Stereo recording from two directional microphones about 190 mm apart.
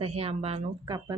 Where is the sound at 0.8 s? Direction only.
20° right (ahead or behind).